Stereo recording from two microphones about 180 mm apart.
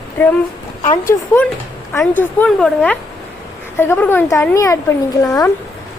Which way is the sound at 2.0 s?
10° left (ahead or behind).